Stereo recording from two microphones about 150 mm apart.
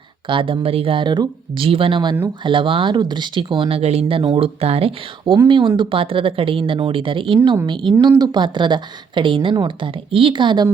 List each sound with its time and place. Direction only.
0.3 s speech: 35° right (ahead or behind)